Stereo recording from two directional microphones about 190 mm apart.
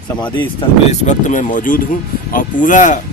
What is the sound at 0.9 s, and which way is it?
Speech, 40° left (ahead or behind).